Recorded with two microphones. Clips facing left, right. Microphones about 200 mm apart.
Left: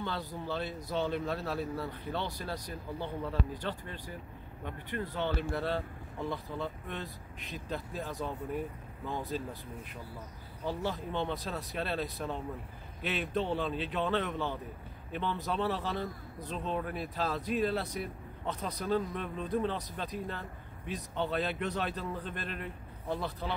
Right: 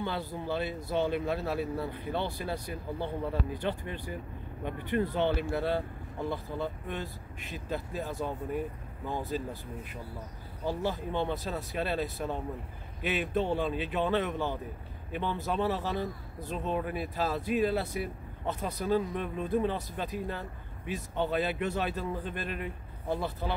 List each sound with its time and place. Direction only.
0.5 s speech: 10° right (ahead or behind)
10.6 s speech: 10° right (ahead or behind)